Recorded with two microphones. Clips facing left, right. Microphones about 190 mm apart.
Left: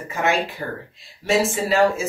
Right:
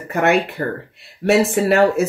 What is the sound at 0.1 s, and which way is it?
Speech, 65° right (ahead or behind).